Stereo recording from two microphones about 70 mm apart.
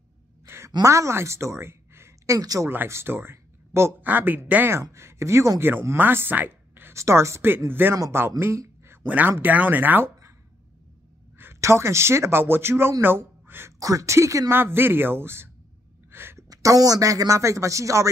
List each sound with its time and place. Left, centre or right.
0.8 s a woman's voice: right
2.3 s speech: right
2.7 s speech: right
4.9 s speech: right
7.9 s speech: right
8.4 s a sound: right
9.0 s speech: right
11.6 s speech: right
13.7 s speech: right
14.5 s speech: right
16.1 s a sound: right
16.3 s speech: right